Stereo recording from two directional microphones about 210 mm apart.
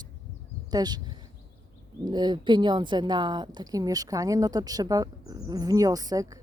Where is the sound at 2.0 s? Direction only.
20° right (ahead or behind).